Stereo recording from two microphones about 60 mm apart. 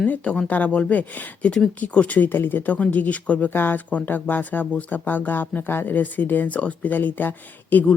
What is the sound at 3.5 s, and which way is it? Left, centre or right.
Speech, left.